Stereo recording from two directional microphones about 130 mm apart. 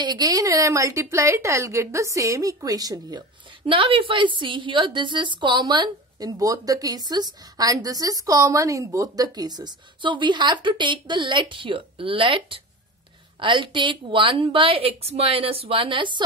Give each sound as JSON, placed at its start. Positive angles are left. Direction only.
{"t": 0.0, "sound": "speech", "side_deg": -35}